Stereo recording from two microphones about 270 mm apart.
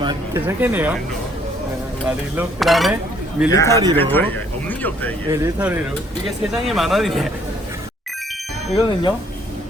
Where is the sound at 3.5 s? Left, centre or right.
Centre.